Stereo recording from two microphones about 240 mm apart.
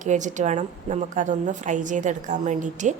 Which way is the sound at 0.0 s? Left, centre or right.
Right.